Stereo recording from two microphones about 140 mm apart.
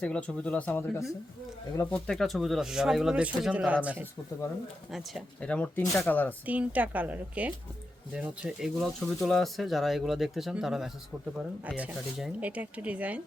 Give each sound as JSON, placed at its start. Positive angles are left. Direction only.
{"t": 0.0, "sound": "speech", "side_deg": 10}
{"t": 4.9, "sound": "speech", "side_deg": 0}
{"t": 5.5, "sound": "speech", "side_deg": 10}
{"t": 6.4, "sound": "speech", "side_deg": -10}